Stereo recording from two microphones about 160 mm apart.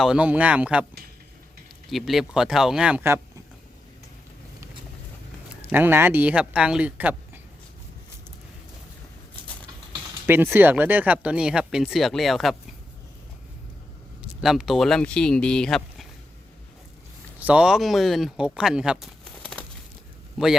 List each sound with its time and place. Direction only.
0.0 s speech: 5° right (ahead or behind)
1.9 s speech: centre (ahead or behind)
5.7 s speech: 15° right (ahead or behind)
10.2 s speech: 15° right (ahead or behind)
14.2 s speech: centre (ahead or behind)
17.4 s speech: 5° right (ahead or behind)
19.4 s crumpling: 5° left (ahead or behind)